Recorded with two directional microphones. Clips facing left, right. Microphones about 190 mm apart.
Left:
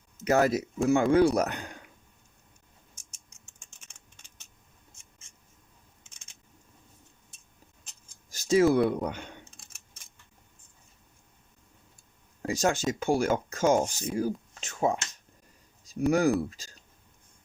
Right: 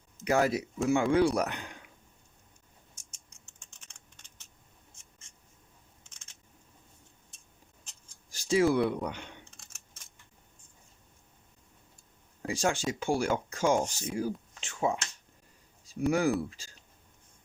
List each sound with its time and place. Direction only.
0.3 s speech: 45° left (ahead or behind)
8.3 s speech: 45° left (ahead or behind)
12.4 s speech: 40° left (ahead or behind)